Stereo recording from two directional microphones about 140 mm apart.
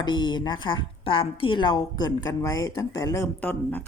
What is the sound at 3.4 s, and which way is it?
Speech, 10° left (ahead or behind).